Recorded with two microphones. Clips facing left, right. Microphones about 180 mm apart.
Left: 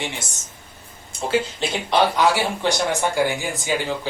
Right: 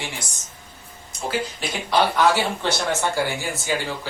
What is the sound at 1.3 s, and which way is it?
Speech, 25° left (ahead or behind).